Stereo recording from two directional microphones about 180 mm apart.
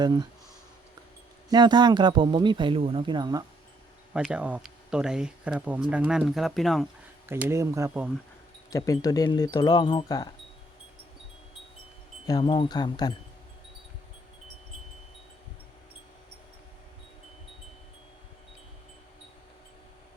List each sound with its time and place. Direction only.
0.0 s speech: 25° right (ahead or behind)
1.5 s speech: 25° right (ahead or behind)
4.1 s speech: 5° right (ahead or behind)
7.3 s speech: 10° right (ahead or behind)
8.7 s wind chime: 20° left (ahead or behind)
12.4 s wind chime: 25° left (ahead or behind)